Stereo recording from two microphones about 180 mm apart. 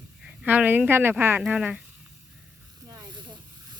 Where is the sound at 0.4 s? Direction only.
10° right (ahead or behind).